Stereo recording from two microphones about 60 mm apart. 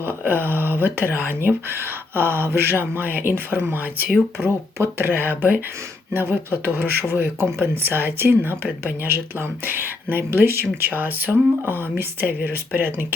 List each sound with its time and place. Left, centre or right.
0.0 s speech: right